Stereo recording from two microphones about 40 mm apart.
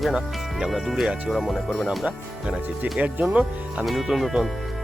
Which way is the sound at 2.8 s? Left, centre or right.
Right.